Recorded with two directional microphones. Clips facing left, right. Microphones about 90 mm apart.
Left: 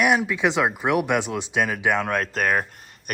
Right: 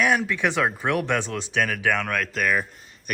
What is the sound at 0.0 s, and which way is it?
A man's voice, 15° left (ahead or behind).